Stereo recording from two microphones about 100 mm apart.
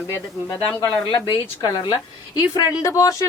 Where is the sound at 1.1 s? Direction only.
50° left (ahead or behind).